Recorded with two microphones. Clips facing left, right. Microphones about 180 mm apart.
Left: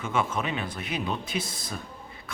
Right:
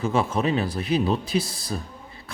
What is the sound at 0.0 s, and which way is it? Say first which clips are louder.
Speech: right 5 dB; 35° right (ahead or behind).